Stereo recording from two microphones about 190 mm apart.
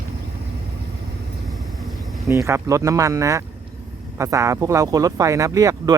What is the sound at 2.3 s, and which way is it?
Speech, 15° right (ahead or behind).